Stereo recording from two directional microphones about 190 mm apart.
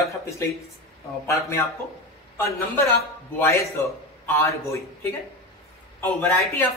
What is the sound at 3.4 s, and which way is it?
Speech, 15° left (ahead or behind).